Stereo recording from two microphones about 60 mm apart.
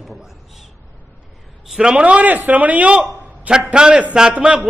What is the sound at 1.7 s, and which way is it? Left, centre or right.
A man's voice, centre.